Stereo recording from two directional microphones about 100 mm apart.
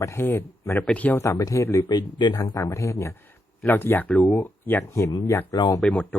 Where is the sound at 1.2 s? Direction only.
35° left (ahead or behind).